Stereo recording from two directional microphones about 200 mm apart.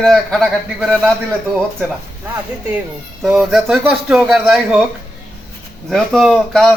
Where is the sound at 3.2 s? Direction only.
Centre (ahead or behind).